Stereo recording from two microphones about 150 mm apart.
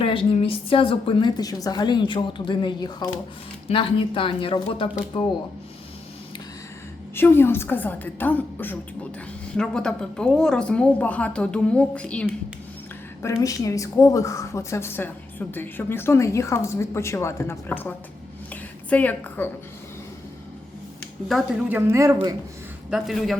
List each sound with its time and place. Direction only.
0.0 s a woman's voice: 35° left (ahead or behind)
7.2 s a woman's voice: 15° left (ahead or behind)
13.2 s a woman's voice: 20° left (ahead or behind)
21.7 s a man's voice: 15° right (ahead or behind)
22.9 s speech: centre (ahead or behind)